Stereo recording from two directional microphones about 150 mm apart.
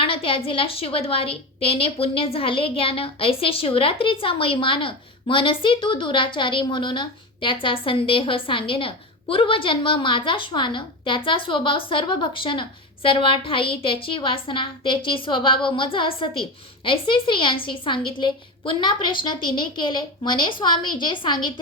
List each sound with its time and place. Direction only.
0.0 s a woman's voice: 35° left (ahead or behind)